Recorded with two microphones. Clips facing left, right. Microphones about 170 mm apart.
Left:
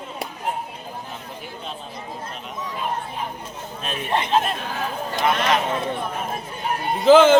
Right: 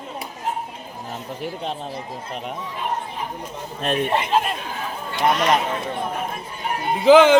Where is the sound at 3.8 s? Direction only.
60° right (ahead or behind).